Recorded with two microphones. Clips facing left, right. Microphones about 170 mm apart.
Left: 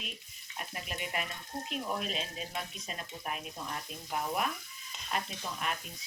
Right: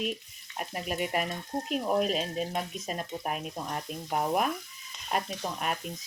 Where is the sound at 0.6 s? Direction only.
45° right (ahead or behind).